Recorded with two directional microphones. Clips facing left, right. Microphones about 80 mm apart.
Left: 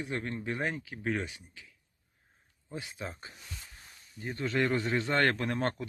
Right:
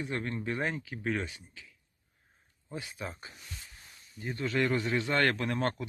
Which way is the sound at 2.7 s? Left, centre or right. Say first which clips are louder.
Even; left.